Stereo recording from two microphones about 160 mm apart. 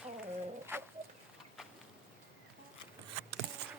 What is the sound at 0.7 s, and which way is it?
Bird, 15° right (ahead or behind).